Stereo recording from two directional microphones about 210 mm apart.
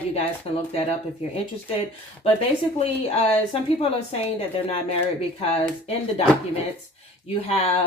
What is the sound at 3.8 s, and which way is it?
Speech, 30° left (ahead or behind).